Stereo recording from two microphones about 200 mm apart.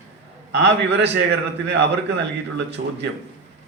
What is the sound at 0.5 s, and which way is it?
A man's voice, 60° right (ahead or behind).